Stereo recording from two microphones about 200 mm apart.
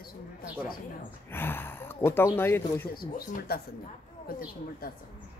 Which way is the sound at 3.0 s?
50° left (ahead or behind).